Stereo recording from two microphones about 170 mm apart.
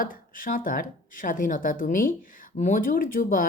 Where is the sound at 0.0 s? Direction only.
50° left (ahead or behind).